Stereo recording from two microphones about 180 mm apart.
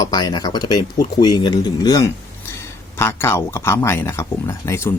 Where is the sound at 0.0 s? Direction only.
20° left (ahead or behind).